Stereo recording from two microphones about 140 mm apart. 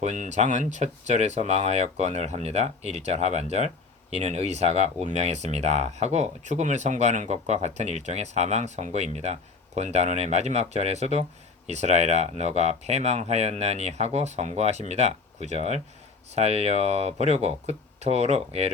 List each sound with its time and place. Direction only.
0.0 s speech: 60° right (ahead or behind)